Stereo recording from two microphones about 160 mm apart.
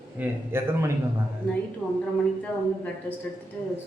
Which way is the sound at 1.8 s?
Centre (ahead or behind).